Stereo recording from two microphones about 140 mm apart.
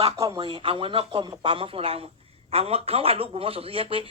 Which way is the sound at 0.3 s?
40° right (ahead or behind).